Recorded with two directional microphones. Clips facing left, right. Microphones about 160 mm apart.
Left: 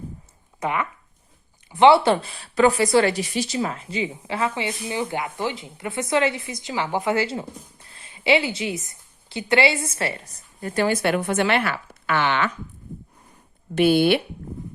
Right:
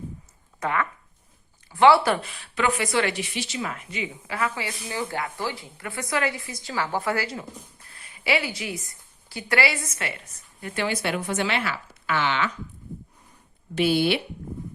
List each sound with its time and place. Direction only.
0.6 s a woman's voice: 15° left (ahead or behind); by 12.5 s 55° left (ahead or behind)
13.7 s speech: 55° left (ahead or behind)